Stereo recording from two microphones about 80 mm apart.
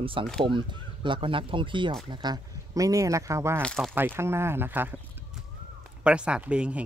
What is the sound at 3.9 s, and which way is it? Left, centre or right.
Speech, right.